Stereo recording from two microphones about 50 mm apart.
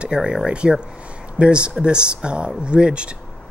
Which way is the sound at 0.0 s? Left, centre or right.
Centre.